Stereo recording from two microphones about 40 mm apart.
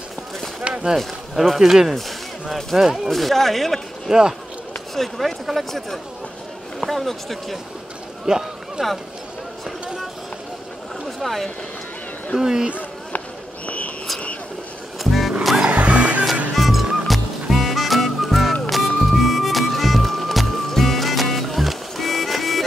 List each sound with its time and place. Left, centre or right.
0.9 s speech: centre
4.1 s speech: centre
4.9 s speech: centre
8.3 s a sound: centre
11.1 s speech: centre
12.4 s speech: centre
13.7 s a sound: left
15.0 s music: centre
15.7 s music: right
16.5 s music: centre